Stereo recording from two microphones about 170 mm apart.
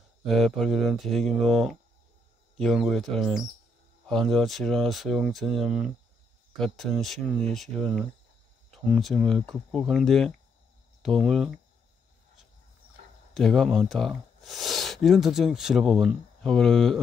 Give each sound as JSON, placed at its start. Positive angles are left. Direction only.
{"t": 0.2, "sound": "speech", "side_deg": 0}
{"t": 13.3, "sound": "speech", "side_deg": 0}